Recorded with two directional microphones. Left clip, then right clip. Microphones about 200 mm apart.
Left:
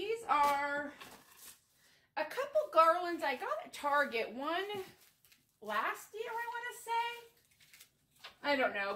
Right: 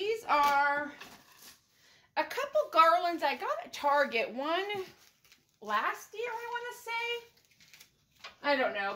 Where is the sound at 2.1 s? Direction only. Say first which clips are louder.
Right 4 dB; 40° right (ahead or behind).